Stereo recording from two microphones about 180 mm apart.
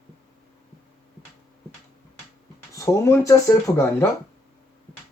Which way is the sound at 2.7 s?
15° left (ahead or behind).